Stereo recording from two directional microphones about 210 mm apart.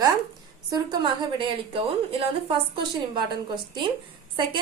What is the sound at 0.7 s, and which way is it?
A woman's voice, 20° right (ahead or behind).